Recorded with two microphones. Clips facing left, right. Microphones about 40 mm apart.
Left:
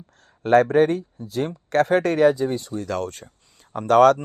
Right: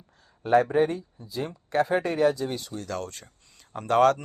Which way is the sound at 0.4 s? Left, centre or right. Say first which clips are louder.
Left 5 dB; left.